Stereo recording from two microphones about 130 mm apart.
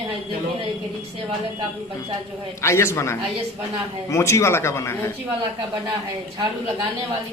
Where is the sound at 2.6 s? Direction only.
20° left (ahead or behind).